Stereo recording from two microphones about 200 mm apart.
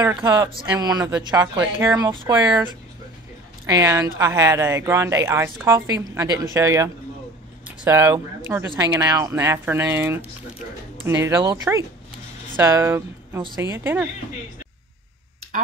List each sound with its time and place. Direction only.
0.0 s speech: 15° right (ahead or behind)